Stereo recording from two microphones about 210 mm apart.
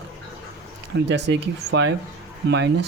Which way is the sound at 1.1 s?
55° right (ahead or behind).